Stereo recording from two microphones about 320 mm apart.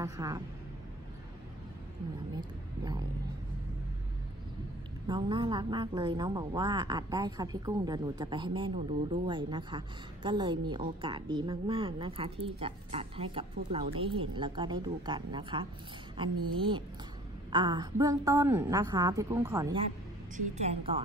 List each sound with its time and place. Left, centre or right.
0.0 s speech: centre
2.3 s speech: centre
5.0 s a woman's voice: centre